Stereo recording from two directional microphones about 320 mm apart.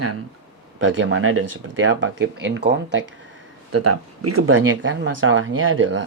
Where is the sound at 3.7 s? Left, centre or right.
Right.